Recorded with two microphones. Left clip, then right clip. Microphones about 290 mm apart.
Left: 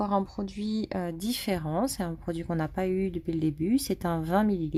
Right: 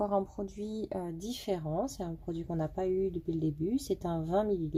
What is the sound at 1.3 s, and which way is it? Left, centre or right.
Speech, left.